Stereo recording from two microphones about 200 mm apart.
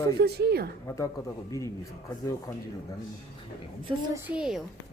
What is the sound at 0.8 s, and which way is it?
Speech, 15° left (ahead or behind).